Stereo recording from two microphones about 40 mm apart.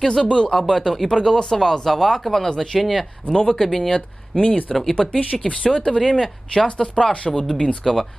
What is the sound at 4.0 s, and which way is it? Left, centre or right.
Speech, left.